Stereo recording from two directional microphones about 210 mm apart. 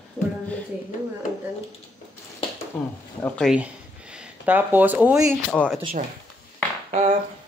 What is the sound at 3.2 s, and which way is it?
Speech, centre (ahead or behind).